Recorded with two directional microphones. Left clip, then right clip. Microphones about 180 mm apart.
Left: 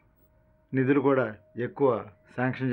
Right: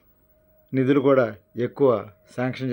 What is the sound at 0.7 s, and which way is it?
Speech, 30° right (ahead or behind).